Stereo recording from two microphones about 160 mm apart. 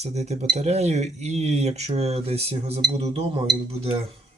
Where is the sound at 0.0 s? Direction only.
45° right (ahead or behind).